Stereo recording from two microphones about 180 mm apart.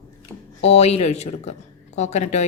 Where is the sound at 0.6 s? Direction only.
35° left (ahead or behind).